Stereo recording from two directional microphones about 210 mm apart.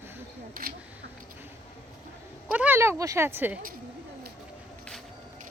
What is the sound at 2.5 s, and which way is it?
Speech, 10° right (ahead or behind).